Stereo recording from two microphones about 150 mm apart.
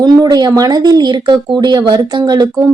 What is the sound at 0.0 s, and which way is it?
Speech, 25° right (ahead or behind).